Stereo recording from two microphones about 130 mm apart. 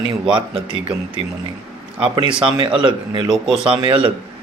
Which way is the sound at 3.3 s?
5° right (ahead or behind).